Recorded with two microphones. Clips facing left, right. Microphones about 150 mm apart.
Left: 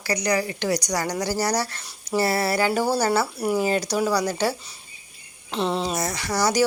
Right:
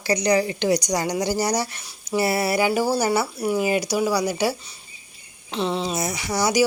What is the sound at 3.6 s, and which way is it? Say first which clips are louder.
Speech: right 1 dB; 10° right (ahead or behind).